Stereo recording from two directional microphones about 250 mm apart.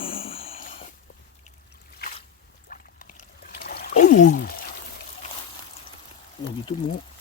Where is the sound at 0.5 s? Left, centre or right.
Left.